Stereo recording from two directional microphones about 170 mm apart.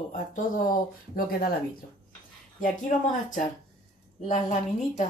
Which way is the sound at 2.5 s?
50° left (ahead or behind).